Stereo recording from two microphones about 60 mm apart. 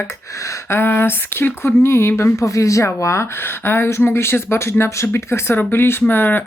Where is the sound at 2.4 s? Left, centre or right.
Left.